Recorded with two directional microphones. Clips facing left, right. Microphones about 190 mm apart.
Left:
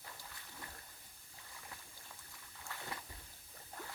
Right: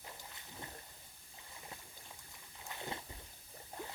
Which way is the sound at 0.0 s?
20° right (ahead or behind).